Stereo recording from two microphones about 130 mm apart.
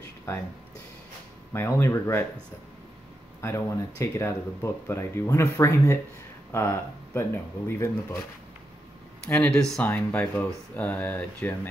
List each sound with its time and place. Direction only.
1.5 s speech: 20° left (ahead or behind)
3.3 s speech: 20° left (ahead or behind)
9.2 s speech: 5° left (ahead or behind)